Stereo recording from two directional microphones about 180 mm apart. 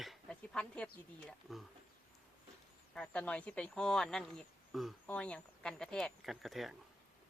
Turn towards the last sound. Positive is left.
turn(degrees=0)  # may be behind; listen again after turning